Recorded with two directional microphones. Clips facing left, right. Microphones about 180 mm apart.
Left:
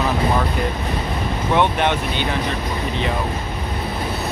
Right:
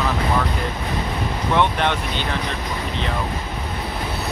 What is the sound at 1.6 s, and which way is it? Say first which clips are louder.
Speech: left 2 dB; 10° left (ahead or behind).